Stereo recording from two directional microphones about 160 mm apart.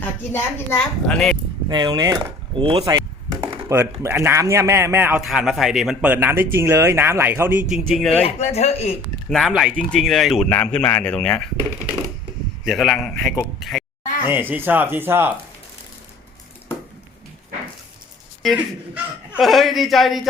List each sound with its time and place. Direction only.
0.0 s a woman's voice: 10° left (ahead or behind)
1.6 s speech: 25° right (ahead or behind)
2.9 s a sound: 20° right (ahead or behind)
3.7 s speech: 20° right (ahead or behind)
5.2 s a man's voice: centre (ahead or behind)
8.2 s speech: 45° left (ahead or behind)
9.3 s a man's voice: centre (ahead or behind)
12.6 s a man's voice: centre (ahead or behind)
14.3 s speech: 10° right (ahead or behind)
19.4 s a man's voice: centre (ahead or behind)